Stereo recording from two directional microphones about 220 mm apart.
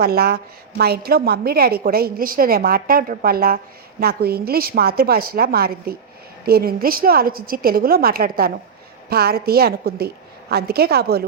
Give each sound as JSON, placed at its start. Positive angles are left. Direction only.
{"t": 0.0, "sound": "a woman's voice", "side_deg": -45}